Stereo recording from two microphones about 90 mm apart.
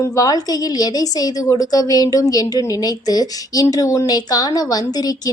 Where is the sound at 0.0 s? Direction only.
40° left (ahead or behind).